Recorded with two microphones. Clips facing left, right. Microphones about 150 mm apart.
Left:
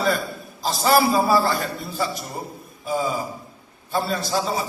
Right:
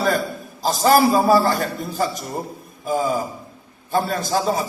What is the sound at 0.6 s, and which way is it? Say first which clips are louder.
A man's voice: right 3 dB; 45° right (ahead or behind).